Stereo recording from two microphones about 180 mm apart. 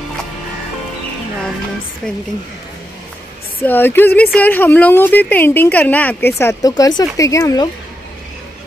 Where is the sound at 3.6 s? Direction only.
10° left (ahead or behind).